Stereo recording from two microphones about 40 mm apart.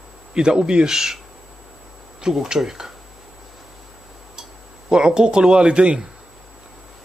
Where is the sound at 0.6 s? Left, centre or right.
Right.